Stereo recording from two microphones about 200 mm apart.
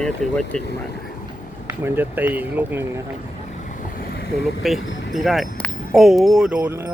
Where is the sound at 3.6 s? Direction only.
45° left (ahead or behind).